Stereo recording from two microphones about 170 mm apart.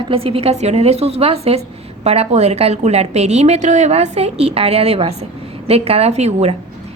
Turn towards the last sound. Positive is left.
turn(degrees=-40)  # may be behind; listen again after turning